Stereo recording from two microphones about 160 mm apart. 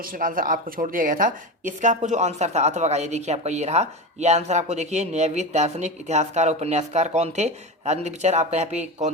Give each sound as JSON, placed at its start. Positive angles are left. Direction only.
{"t": 0.0, "sound": "speech", "side_deg": -60}